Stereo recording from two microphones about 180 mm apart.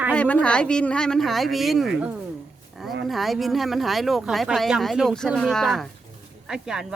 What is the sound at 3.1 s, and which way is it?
Speech, centre (ahead or behind).